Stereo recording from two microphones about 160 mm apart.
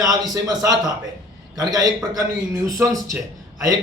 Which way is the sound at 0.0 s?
25° right (ahead or behind).